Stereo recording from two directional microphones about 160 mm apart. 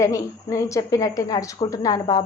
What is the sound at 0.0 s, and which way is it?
A woman's voice, 20° left (ahead or behind).